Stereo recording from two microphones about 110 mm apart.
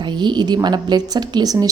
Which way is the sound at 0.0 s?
45° right (ahead or behind).